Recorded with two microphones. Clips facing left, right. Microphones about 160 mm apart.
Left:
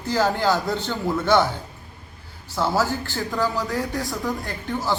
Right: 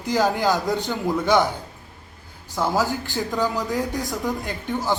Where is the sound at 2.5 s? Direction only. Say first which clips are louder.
Even; 15° right (ahead or behind).